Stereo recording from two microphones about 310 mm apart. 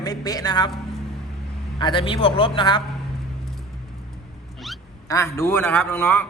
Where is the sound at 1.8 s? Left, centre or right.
Centre.